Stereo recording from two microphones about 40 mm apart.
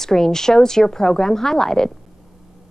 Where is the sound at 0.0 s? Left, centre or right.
Centre.